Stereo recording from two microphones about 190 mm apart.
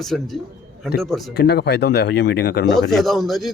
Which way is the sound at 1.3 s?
60° left (ahead or behind).